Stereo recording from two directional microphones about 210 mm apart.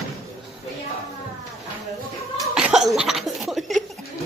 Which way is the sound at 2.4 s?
Centre (ahead or behind).